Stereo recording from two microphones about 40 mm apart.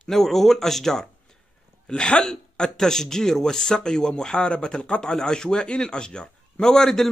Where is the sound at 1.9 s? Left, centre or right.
Left.